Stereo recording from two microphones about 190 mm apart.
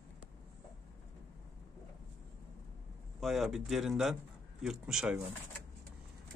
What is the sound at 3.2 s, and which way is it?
A man's voice, centre (ahead or behind).